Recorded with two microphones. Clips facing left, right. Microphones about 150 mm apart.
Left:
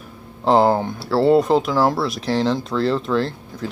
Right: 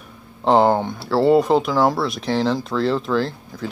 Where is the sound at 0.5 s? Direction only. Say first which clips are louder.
Even; centre (ahead or behind).